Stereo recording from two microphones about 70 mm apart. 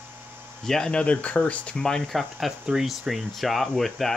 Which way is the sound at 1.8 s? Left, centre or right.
Centre.